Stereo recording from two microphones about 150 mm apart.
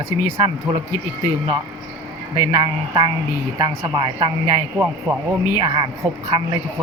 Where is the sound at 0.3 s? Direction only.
35° right (ahead or behind).